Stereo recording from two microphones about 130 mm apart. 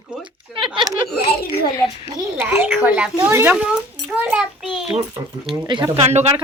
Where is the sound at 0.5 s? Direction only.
40° right (ahead or behind).